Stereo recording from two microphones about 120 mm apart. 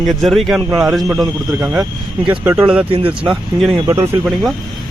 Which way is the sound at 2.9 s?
50° right (ahead or behind).